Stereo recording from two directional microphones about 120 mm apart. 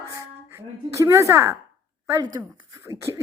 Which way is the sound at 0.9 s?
25° right (ahead or behind).